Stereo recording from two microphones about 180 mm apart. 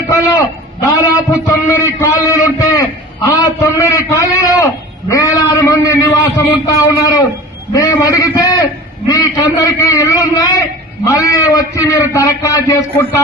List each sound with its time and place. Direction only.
0.1 s a man's voice: 15° left (ahead or behind)